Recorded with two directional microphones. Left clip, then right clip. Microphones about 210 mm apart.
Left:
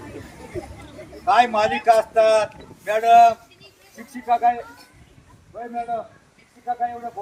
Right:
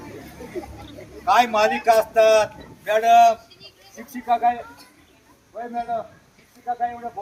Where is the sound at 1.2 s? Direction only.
20° right (ahead or behind).